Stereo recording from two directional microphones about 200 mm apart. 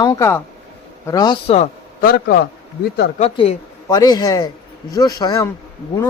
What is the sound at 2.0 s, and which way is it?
Speech, 50° left (ahead or behind).